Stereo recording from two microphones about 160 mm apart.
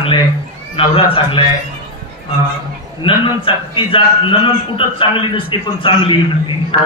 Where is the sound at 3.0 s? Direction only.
30° left (ahead or behind).